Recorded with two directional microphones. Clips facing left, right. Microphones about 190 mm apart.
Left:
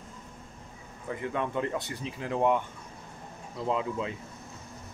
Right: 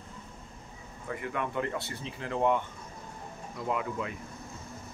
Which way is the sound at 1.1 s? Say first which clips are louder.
Left 2 dB; 20° left (ahead or behind).